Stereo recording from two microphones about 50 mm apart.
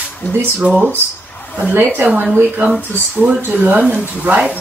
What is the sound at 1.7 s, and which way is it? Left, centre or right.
Speech, right.